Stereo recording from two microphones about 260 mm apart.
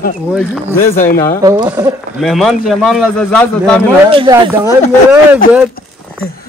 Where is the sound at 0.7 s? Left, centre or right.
Left.